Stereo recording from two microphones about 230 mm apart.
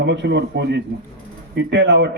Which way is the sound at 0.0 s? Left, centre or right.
Right.